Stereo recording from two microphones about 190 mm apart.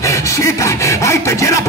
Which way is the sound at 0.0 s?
15° left (ahead or behind).